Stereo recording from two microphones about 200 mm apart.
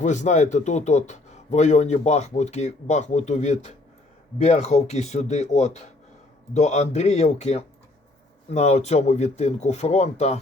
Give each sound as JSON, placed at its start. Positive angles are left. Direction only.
{"t": 0.0, "sound": "speech", "side_deg": 35}